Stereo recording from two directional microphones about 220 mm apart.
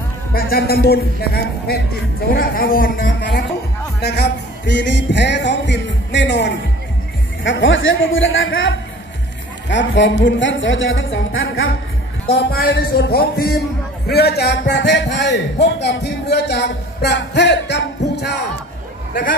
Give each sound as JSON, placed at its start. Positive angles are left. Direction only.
{"t": 0.3, "sound": "a man's voice", "side_deg": 45}
{"t": 12.3, "sound": "a man's voice", "side_deg": 45}